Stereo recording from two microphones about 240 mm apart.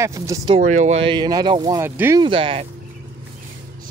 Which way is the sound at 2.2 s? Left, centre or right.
Right.